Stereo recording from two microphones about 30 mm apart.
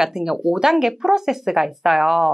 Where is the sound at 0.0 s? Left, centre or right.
Centre.